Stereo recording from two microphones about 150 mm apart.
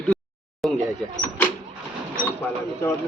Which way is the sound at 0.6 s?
Centre (ahead or behind).